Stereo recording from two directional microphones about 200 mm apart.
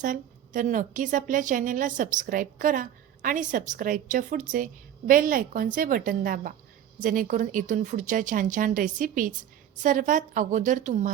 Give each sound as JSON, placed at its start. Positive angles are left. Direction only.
{"t": 0.0, "sound": "a woman's voice", "side_deg": -40}